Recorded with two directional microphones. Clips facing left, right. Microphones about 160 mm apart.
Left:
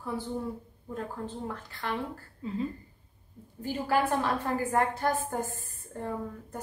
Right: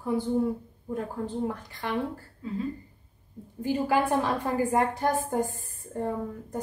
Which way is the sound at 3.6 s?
15° right (ahead or behind).